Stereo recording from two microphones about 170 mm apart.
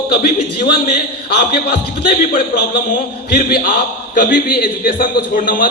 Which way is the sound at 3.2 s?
65° left (ahead or behind).